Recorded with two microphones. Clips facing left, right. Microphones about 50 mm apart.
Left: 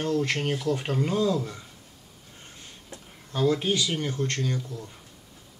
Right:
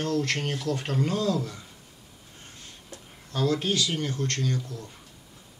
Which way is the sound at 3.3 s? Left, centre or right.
Centre.